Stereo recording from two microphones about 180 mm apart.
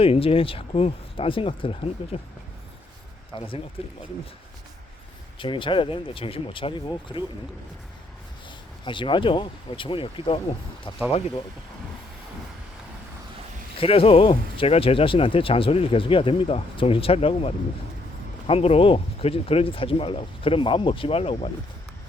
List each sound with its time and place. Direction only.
0.0 s speech: 30° left (ahead or behind)
3.3 s speech: 30° left (ahead or behind)
5.4 s speech: 30° left (ahead or behind)
8.8 s speech: 25° left (ahead or behind)
13.7 s speech: 30° left (ahead or behind)